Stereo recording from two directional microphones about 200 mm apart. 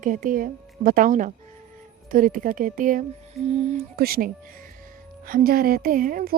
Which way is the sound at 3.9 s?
50° right (ahead or behind).